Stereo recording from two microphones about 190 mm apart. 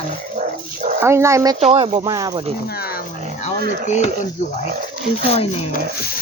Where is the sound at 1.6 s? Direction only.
30° right (ahead or behind).